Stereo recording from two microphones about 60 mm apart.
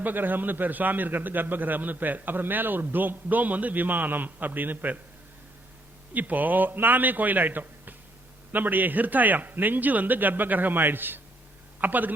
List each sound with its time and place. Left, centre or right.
0.0 s a man's voice: right
6.1 s a man's voice: right